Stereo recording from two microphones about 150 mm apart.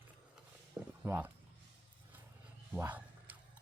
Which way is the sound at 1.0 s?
10° right (ahead or behind).